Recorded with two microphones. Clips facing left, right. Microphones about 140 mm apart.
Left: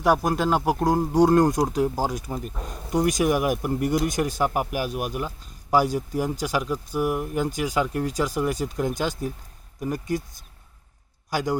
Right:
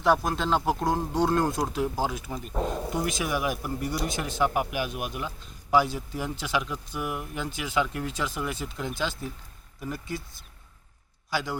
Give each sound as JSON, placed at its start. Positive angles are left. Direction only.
{"t": 0.0, "sound": "speech", "side_deg": 10}
{"t": 1.2, "sound": "speech", "side_deg": 45}
{"t": 2.5, "sound": "speech", "side_deg": -30}
{"t": 2.9, "sound": "speech", "side_deg": 45}
{"t": 11.3, "sound": "a man's voice", "side_deg": 45}